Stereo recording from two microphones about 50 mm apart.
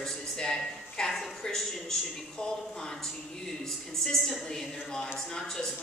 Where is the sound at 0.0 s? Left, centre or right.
Centre.